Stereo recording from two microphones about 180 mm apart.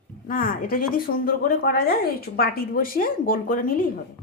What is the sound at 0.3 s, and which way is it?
A woman's voice, 50° left (ahead or behind).